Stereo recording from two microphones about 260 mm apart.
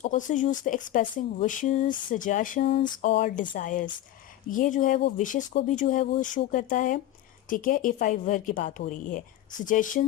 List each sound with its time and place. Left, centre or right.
0.0 s speech: left